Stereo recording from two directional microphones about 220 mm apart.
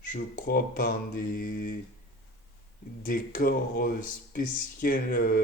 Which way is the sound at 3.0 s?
40° left (ahead or behind).